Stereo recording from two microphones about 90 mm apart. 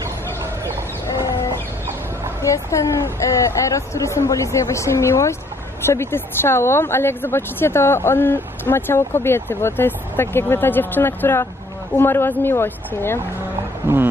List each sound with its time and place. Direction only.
2.4 s speech: 35° left (ahead or behind)
13.8 s speech: 20° right (ahead or behind)